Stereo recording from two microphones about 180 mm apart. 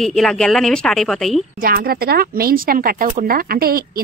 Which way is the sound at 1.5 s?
55° right (ahead or behind).